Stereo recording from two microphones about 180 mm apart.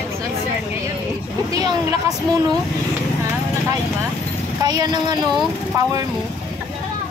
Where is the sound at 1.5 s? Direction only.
20° right (ahead or behind).